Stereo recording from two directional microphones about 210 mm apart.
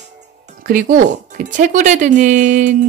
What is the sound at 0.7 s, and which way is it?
Speech, 40° right (ahead or behind).